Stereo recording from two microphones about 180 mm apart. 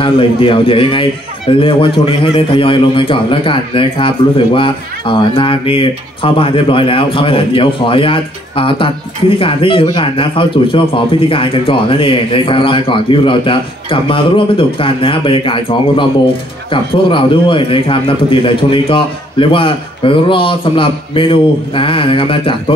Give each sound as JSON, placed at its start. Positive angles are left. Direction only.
{"t": 0.0, "sound": "speech", "side_deg": 30}